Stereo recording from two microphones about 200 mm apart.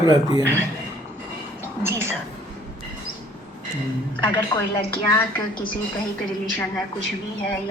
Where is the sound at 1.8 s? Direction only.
10° right (ahead or behind).